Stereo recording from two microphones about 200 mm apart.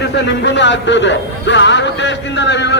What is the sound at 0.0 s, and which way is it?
Speech, 60° left (ahead or behind).